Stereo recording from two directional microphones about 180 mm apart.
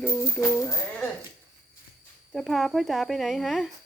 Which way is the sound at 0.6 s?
15° left (ahead or behind).